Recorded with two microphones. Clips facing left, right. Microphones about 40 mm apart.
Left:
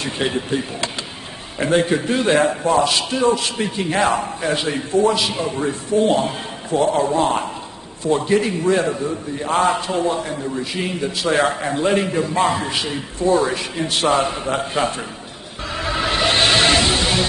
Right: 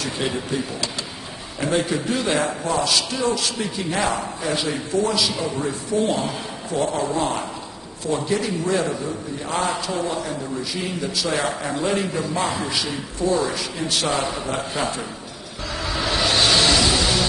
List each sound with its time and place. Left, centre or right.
0.0 s a man's voice: left
15.8 s music: left